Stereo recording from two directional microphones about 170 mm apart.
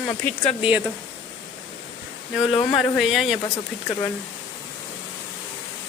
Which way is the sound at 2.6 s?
Centre (ahead or behind).